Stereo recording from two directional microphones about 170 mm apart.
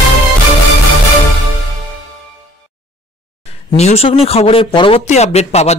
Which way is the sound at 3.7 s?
40° left (ahead or behind).